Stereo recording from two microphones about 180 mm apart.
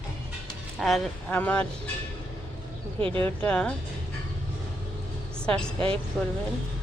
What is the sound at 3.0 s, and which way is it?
Speech, 30° right (ahead or behind).